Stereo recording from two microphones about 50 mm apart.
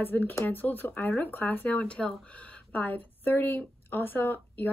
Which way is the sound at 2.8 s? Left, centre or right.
Left.